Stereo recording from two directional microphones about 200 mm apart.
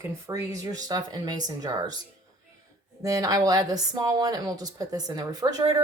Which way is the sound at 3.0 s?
20° right (ahead or behind).